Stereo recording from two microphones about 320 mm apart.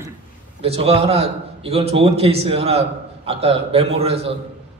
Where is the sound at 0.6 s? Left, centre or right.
Centre.